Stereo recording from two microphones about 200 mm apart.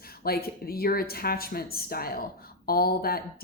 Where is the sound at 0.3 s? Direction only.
50° left (ahead or behind).